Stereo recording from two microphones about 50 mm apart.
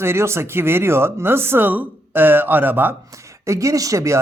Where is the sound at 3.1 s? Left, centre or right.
Right.